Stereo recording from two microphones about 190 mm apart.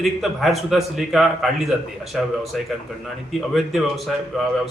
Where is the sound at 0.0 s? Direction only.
Centre (ahead or behind).